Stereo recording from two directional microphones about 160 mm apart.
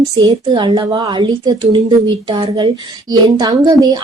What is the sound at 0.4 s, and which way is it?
A woman's voice, 30° right (ahead or behind).